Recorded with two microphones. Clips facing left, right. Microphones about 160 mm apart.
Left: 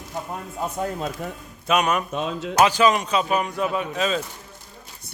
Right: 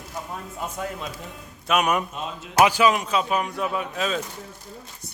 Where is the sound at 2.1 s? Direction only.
75° left (ahead or behind).